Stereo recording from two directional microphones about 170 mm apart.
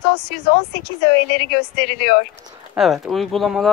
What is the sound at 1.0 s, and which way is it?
A woman's voice, 65° left (ahead or behind).